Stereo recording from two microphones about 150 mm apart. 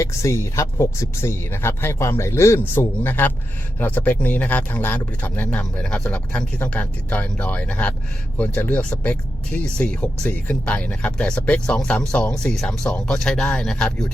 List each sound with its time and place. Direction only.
0.0 s speech: 20° left (ahead or behind); by 14.1 s 5° left (ahead or behind)